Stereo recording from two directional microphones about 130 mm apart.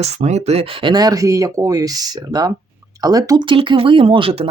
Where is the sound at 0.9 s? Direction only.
30° right (ahead or behind).